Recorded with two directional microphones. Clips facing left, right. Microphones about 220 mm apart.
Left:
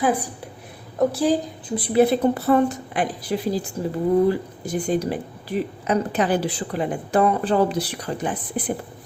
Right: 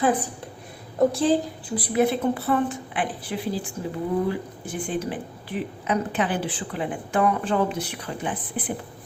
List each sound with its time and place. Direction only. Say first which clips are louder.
0.0 s a woman's voice: left 1 dB; 10° left (ahead or behind)
1.7 s a woman's voice: left 4 dB; 30° left (ahead or behind)